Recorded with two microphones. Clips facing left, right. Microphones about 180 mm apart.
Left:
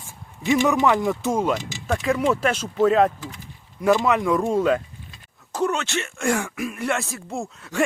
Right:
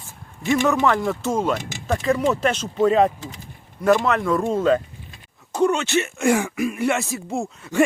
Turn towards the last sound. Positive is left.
turn(degrees=0)  # may be behind; listen again after turning